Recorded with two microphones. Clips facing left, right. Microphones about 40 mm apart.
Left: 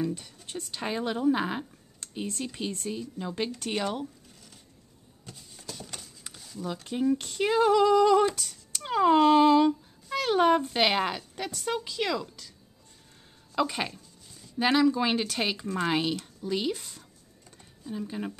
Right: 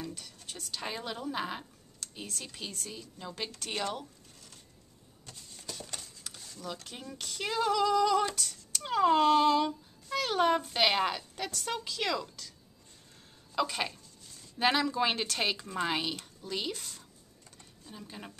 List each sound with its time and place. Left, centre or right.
0.5 s speech: left
5.2 s a sound: centre
6.3 s speech: centre
17.5 s computer keyboard: centre